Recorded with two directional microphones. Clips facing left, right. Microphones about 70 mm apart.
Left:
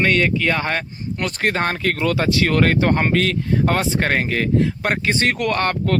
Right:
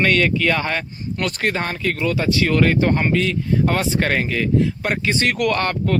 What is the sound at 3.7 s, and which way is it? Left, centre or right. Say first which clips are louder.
Speech: even; left.